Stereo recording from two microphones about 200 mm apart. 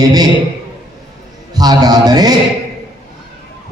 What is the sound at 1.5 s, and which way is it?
Speech, 20° right (ahead or behind).